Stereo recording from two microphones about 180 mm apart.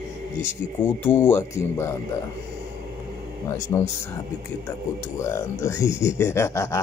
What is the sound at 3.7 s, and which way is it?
Speech, 20° left (ahead or behind).